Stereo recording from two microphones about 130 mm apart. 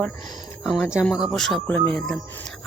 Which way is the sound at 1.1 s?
Centre (ahead or behind).